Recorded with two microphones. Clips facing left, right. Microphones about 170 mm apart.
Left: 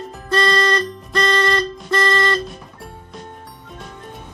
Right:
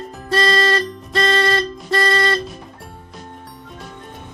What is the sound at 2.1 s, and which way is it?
Music, 20° right (ahead or behind).